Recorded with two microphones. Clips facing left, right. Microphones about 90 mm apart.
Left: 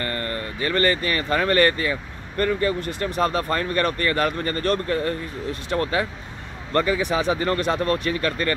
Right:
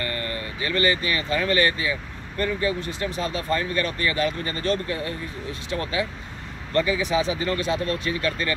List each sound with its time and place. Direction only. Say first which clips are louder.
0.0 s speech: left 2 dB; 40° left (ahead or behind)